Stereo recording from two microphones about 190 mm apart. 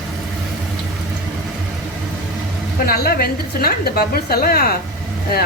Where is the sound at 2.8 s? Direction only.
50° left (ahead or behind).